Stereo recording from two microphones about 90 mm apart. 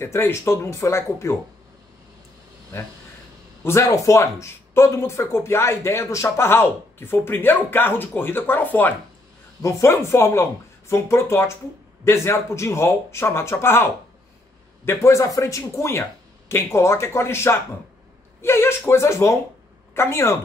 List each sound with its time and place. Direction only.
0.0 s speech: 30° left (ahead or behind)
3.6 s speech: 35° left (ahead or behind)
9.6 s speech: 35° left (ahead or behind)
14.9 s a woman's voice: 35° left (ahead or behind)